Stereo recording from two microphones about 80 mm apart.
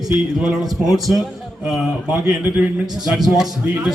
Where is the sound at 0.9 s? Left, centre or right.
Centre.